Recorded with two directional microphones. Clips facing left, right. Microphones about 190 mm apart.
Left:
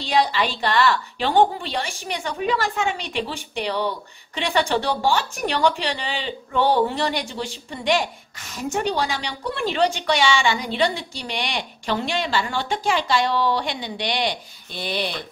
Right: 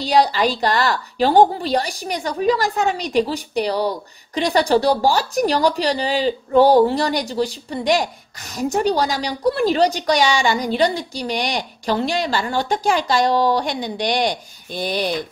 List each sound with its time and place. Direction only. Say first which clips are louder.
0.0 s a woman's voice: right 4 dB; 40° right (ahead or behind)